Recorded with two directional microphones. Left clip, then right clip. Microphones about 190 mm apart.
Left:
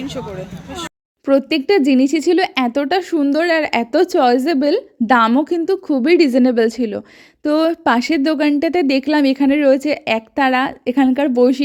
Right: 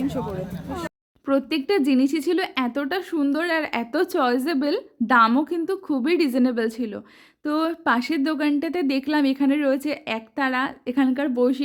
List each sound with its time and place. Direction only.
1.2 s speech: 25° left (ahead or behind)